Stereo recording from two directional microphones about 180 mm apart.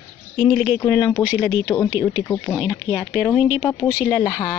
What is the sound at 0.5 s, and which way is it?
Speech, 5° right (ahead or behind).